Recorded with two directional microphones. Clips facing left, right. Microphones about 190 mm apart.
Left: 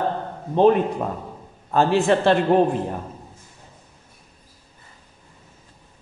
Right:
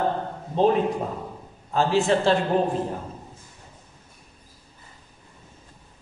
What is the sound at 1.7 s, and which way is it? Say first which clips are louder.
Speech: left 3 dB; 55° left (ahead or behind).